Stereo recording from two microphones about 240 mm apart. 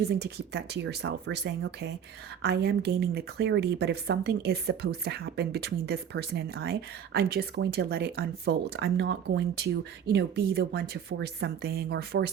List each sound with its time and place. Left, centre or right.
0.2 s speech: right